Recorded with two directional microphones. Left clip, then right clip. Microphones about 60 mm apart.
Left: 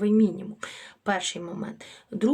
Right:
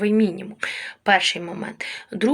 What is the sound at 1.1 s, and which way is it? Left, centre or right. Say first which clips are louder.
Speech: right 10 dB; left.